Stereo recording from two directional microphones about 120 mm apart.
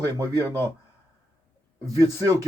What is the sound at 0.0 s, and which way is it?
Speech, 30° right (ahead or behind).